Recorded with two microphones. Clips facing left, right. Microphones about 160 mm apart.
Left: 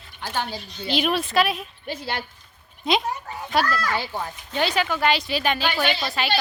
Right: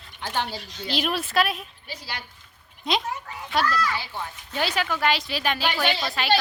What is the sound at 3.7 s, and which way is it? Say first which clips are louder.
Speech: left 1 dB; 50° left (ahead or behind).